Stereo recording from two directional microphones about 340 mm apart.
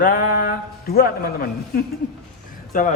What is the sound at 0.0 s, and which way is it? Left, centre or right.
A man's voice, left.